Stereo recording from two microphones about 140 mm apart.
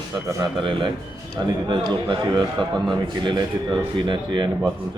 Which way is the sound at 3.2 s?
35° right (ahead or behind).